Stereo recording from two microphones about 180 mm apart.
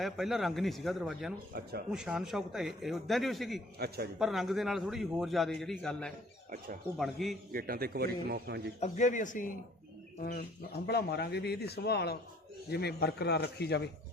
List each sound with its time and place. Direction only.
0.0 s a man's voice: centre (ahead or behind)
1.5 s speech: 55° right (ahead or behind)
1.9 s a man's voice: 5° right (ahead or behind)
3.8 s speech: 60° right (ahead or behind)
4.2 s a man's voice: centre (ahead or behind)
7.5 s speech: 55° right (ahead or behind)
8.8 s speech: 40° left (ahead or behind)
10.8 s speech: 65° left (ahead or behind)